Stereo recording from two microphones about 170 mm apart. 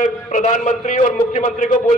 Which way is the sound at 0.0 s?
45° left (ahead or behind).